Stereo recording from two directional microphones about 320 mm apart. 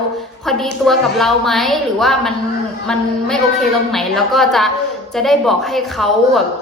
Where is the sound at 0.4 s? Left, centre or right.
Centre.